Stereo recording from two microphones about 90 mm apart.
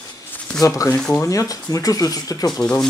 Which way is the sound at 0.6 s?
35° left (ahead or behind).